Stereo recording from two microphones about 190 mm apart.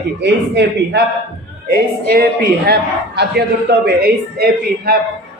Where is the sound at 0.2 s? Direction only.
65° right (ahead or behind).